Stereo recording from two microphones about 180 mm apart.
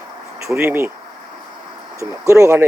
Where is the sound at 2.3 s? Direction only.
15° right (ahead or behind).